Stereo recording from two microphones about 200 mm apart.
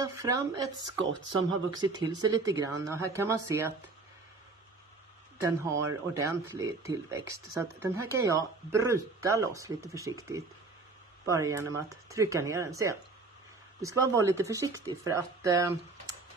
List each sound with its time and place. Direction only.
0.0 s speech: 15° right (ahead or behind)
5.4 s speech: 15° right (ahead or behind)